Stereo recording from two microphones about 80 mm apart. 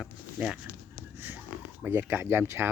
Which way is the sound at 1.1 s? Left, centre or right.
Right.